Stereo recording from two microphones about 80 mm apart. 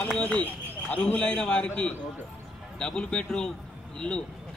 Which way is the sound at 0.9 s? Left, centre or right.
Centre.